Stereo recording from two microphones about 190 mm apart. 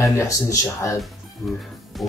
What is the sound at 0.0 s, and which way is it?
Speech, 15° left (ahead or behind).